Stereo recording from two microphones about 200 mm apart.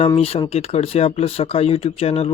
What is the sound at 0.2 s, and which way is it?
Speech, 25° left (ahead or behind).